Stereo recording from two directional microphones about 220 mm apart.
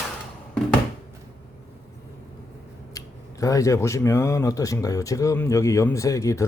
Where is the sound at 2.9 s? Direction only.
15° left (ahead or behind).